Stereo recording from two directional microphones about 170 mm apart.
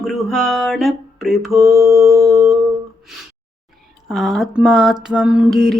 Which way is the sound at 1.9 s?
20° right (ahead or behind).